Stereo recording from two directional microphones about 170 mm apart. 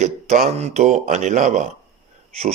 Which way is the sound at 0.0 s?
45° right (ahead or behind).